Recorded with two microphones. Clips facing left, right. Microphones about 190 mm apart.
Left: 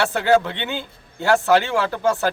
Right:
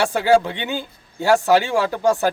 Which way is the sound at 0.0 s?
10° right (ahead or behind).